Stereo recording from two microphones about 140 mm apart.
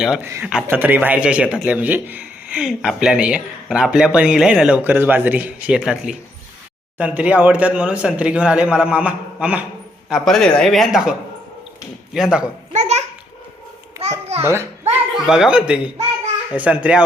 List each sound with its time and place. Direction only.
0.0 s speech: 5° right (ahead or behind)
12.1 s speech: 5° right (ahead or behind)
12.7 s babbling: 55° right (ahead or behind)
14.0 s babbling: 25° right (ahead or behind)
14.4 s a child's voice: 20° right (ahead or behind)
15.1 s speech: 5° right (ahead or behind)